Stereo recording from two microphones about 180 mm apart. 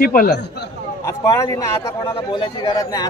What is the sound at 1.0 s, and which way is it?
A man's voice, 15° left (ahead or behind).